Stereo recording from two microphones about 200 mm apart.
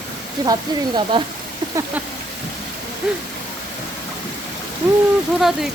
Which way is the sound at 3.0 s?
5° right (ahead or behind).